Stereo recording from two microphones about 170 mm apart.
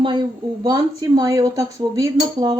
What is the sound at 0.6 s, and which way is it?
Speech, 25° right (ahead or behind).